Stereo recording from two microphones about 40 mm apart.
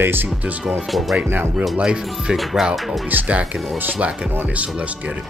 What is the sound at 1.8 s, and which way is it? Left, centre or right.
Speech, right.